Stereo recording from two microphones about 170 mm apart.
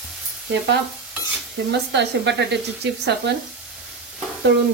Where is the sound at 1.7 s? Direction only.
90° right.